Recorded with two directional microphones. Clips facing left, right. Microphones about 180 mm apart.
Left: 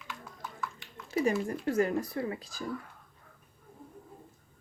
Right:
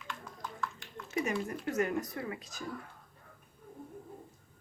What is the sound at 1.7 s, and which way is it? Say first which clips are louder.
Speech: left 4 dB; 30° left (ahead or behind).